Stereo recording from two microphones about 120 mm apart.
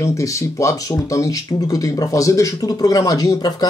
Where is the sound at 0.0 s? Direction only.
25° left (ahead or behind).